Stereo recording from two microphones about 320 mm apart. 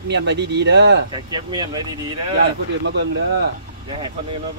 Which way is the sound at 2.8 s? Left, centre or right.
Right.